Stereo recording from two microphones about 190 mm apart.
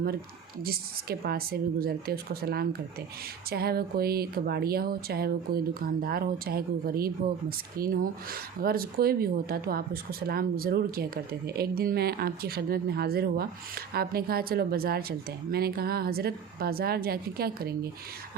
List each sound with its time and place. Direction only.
0.6 s speech: 55° right (ahead or behind)